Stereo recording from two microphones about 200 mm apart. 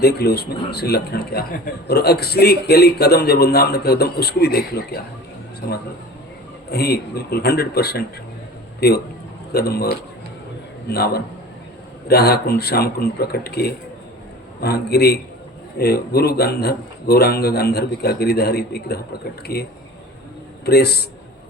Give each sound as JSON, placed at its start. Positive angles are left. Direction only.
{"t": 0.0, "sound": "a man's voice", "side_deg": 50}
{"t": 20.7, "sound": "a man's voice", "side_deg": 55}